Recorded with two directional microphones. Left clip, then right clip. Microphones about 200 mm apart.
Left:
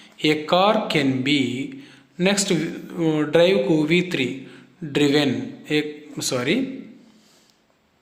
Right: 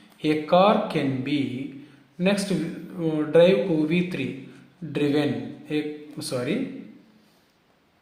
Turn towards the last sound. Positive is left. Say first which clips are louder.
# left 5 dB
turn(degrees=30)  # may be behind; listen again after turning